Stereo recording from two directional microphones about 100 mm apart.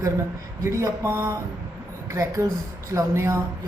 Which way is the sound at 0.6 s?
30° right (ahead or behind).